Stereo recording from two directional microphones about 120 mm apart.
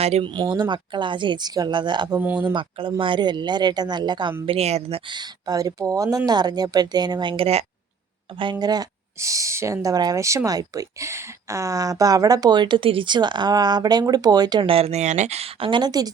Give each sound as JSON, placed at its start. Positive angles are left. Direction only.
{"t": 0.0, "sound": "speech", "side_deg": -60}
{"t": 0.3, "sound": "speech", "side_deg": -40}
{"t": 2.1, "sound": "speech", "side_deg": -15}
{"t": 2.5, "sound": "speech", "side_deg": -45}
{"t": 4.4, "sound": "speech", "side_deg": -60}
{"t": 5.1, "sound": "speech", "side_deg": -35}
{"t": 8.4, "sound": "speech", "side_deg": -40}
{"t": 14.7, "sound": "speech", "side_deg": -60}
{"t": 15.7, "sound": "speech", "side_deg": -35}